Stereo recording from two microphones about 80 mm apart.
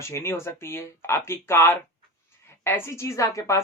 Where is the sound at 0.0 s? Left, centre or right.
Left.